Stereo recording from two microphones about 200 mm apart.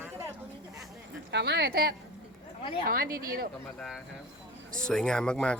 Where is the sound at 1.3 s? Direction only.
55° right (ahead or behind).